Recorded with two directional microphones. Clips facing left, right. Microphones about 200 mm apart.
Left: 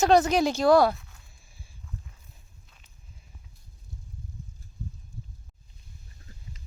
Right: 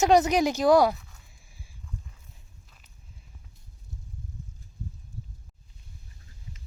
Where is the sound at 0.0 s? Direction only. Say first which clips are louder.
Even; 15° right (ahead or behind).